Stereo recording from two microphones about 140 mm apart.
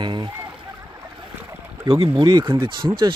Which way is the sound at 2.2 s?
30° right (ahead or behind).